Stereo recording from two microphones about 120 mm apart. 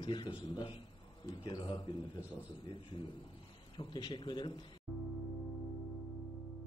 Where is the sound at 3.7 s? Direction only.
40° left (ahead or behind).